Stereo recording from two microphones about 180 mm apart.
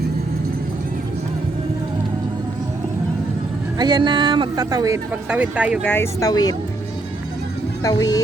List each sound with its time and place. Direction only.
3.8 s speech: 25° right (ahead or behind)
5.3 s speech: 5° right (ahead or behind)
5.8 s speech: 10° left (ahead or behind)
7.9 s speech: 20° left (ahead or behind)